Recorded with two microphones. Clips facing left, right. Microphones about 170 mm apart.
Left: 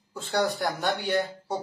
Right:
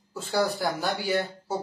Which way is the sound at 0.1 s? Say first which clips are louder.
Even; 5° right (ahead or behind).